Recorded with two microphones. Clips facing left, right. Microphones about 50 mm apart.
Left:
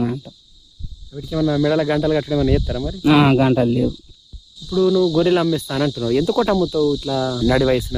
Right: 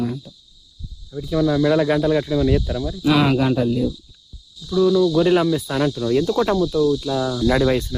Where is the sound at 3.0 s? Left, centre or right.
Left.